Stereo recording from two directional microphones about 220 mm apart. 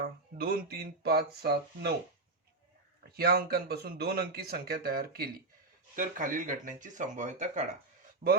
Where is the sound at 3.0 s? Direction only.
45° right (ahead or behind).